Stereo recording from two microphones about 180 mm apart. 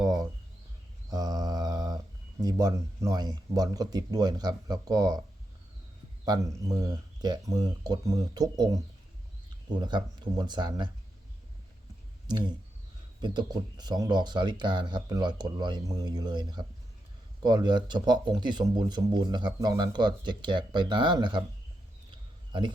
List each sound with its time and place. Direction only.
0.0 s a sound: 20° right (ahead or behind)
1.1 s mantra: 20° right (ahead or behind)
2.4 s speech: 20° right (ahead or behind)
6.2 s speech: 20° right (ahead or behind)
12.3 s speech: 25° right (ahead or behind)